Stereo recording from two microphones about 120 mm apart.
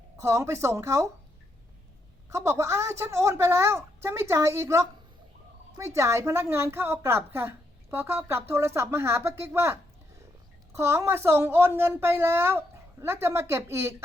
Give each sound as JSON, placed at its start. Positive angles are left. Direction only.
{"t": 0.2, "sound": "a woman's voice", "side_deg": -25}
{"t": 2.3, "sound": "a woman's voice", "side_deg": -25}